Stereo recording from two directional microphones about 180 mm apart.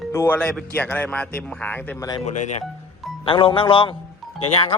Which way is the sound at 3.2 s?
30° left (ahead or behind).